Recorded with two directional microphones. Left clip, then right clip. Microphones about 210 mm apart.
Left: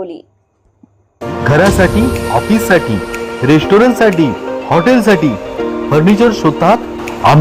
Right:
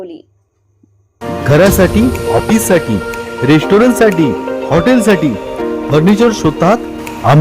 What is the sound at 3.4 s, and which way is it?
Speech, 25° right (ahead or behind).